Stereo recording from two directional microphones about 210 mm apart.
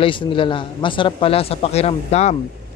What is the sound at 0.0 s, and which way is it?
A man's voice, 25° left (ahead or behind).